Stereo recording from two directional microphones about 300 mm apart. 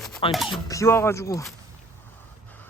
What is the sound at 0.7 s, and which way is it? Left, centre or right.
Speech, centre.